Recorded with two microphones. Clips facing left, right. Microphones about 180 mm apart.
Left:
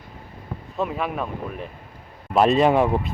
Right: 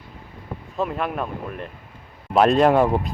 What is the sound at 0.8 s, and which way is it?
Speech, centre (ahead or behind).